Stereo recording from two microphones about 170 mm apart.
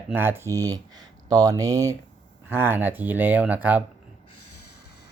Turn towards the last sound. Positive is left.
turn(degrees=-10)  # may be behind; listen again after turning